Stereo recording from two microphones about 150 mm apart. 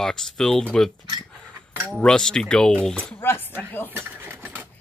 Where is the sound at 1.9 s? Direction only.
5° left (ahead or behind).